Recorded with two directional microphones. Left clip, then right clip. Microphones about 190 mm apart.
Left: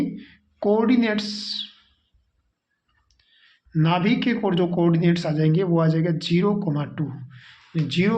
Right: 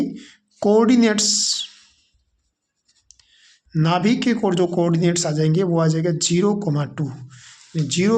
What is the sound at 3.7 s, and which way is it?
A man's voice, 40° right (ahead or behind).